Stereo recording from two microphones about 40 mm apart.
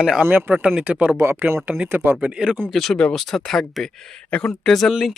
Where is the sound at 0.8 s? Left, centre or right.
Right.